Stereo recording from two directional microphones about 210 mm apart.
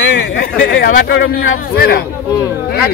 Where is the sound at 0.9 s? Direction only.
50° left (ahead or behind).